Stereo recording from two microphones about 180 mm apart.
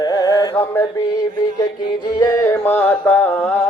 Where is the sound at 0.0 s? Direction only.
20° left (ahead or behind).